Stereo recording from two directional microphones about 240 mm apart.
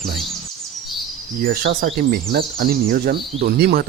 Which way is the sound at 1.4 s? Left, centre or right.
Right.